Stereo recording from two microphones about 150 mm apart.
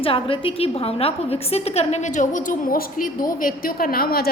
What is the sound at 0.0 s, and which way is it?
A woman's voice, 35° left (ahead or behind).